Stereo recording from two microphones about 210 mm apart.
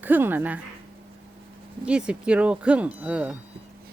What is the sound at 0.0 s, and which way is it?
Speech, 10° right (ahead or behind).